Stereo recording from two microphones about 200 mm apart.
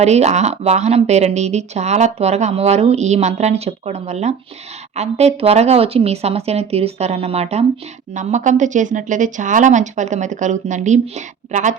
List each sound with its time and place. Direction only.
0.0 s speech: 35° right (ahead or behind)